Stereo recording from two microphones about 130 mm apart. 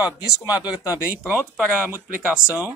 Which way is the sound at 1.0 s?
10° right (ahead or behind).